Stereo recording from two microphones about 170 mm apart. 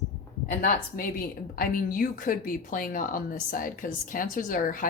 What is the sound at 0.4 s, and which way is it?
A woman's voice, 60° left (ahead or behind).